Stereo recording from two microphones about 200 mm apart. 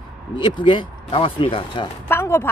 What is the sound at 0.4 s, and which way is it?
A man's voice, 20° left (ahead or behind).